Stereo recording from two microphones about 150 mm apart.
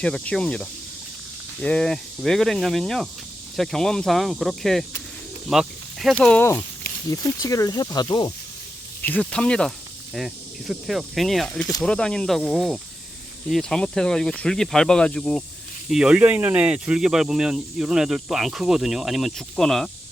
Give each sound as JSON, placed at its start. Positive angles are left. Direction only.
{"t": 0.0, "sound": "speech", "side_deg": 5}
{"t": 7.1, "sound": "speech", "side_deg": 25}
{"t": 9.0, "sound": "speech", "side_deg": 10}